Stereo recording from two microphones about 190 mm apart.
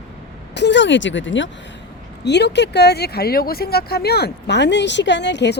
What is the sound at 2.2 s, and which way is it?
Speech, 65° left (ahead or behind).